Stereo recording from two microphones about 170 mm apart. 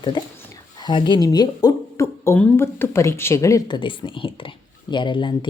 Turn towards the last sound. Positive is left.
turn(degrees=30)  # may be behind; listen again after turning